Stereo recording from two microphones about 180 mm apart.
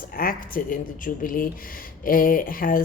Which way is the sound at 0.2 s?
50° left (ahead or behind).